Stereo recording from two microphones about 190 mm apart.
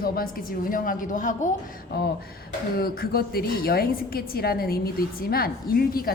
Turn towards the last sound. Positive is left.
turn(degrees=50)  # may be behind; listen again after turning